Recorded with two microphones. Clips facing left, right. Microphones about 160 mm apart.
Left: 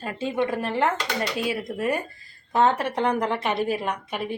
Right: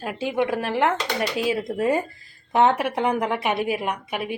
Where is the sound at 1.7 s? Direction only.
25° right (ahead or behind).